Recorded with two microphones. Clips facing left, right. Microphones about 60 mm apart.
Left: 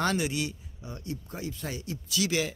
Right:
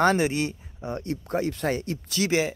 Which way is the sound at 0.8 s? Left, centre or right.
Right.